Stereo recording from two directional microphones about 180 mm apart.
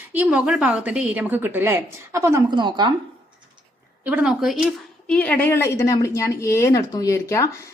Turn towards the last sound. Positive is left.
turn(degrees=15)  # may be behind; listen again after turning